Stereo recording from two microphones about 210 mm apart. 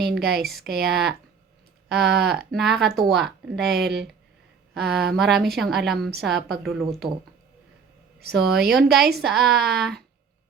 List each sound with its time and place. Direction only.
0.0 s speech: 50° right (ahead or behind)
0.3 s a woman's voice: centre (ahead or behind)
0.6 s a woman's voice: 50° right (ahead or behind)
2.5 s a woman's voice: centre (ahead or behind)
3.5 s a woman's voice: 50° right (ahead or behind)
5.1 s a woman's voice: centre (ahead or behind)
8.3 s a woman's voice: 50° right (ahead or behind)